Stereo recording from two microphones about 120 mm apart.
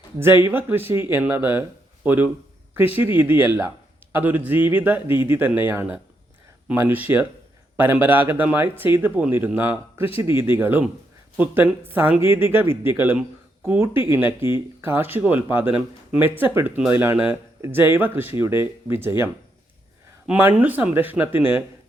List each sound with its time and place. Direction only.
0.4 s speech: 20° right (ahead or behind)
10.2 s speech: 40° left (ahead or behind)
10.6 s speech: 15° right (ahead or behind)